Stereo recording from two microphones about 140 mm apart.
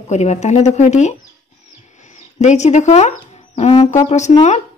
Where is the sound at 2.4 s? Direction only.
55° left (ahead or behind).